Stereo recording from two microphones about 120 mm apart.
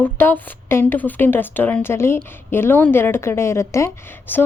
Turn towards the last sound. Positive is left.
turn(degrees=15)  # may be behind; listen again after turning